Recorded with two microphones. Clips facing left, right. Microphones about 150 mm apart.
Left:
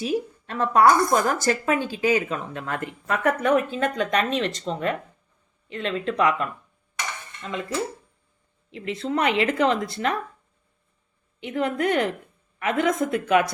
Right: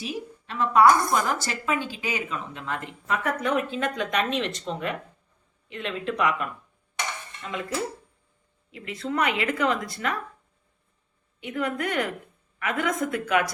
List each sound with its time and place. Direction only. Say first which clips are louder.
0.0 s speech: left 8 dB; 45° left (ahead or behind)
8.7 s speech: left 3 dB; 25° left (ahead or behind)
11.3 s speech: left 4 dB; 25° left (ahead or behind)